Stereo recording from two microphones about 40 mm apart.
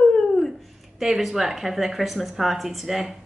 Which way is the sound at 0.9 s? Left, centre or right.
Centre.